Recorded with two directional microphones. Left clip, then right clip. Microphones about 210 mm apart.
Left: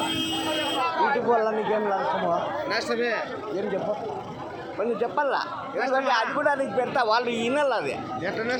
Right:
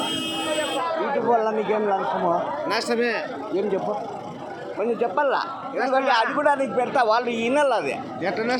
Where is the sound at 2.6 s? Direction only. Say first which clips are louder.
Right 4 dB; 45° right (ahead or behind).